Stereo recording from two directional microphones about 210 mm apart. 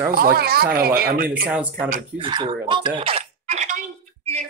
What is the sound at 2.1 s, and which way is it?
Speech, 25° right (ahead or behind).